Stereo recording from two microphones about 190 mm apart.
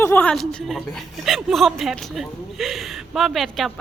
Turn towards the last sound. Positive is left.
turn(degrees=0)  # may be behind; listen again after turning